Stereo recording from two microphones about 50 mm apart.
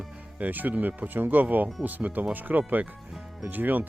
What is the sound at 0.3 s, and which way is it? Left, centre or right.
Speech, right.